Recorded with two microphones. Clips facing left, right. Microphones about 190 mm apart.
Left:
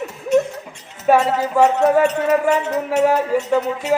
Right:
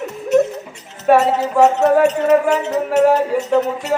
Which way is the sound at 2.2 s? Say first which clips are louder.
Right 3 dB; 10° left (ahead or behind).